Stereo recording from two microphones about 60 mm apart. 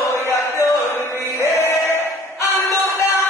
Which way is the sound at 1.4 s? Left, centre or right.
Left.